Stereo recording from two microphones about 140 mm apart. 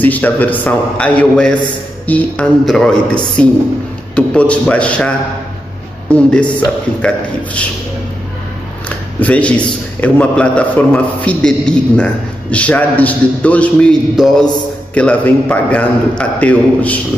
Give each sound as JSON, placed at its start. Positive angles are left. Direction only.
{"t": 0.0, "sound": "a man's voice", "side_deg": 10}
{"t": 8.8, "sound": "a man's voice", "side_deg": 10}